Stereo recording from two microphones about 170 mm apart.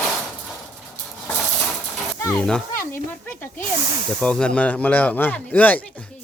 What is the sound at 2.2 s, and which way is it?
Snake, 5° left (ahead or behind).